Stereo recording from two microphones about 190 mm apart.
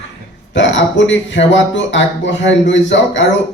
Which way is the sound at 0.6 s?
70° left (ahead or behind).